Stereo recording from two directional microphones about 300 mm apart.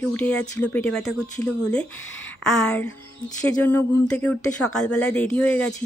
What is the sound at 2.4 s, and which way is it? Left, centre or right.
Speech, centre.